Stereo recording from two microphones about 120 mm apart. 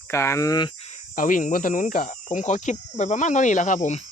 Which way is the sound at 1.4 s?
90° left.